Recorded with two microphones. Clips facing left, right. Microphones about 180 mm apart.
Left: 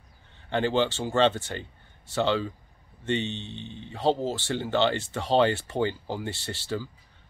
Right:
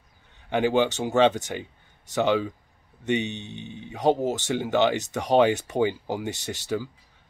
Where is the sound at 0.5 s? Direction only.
15° right (ahead or behind).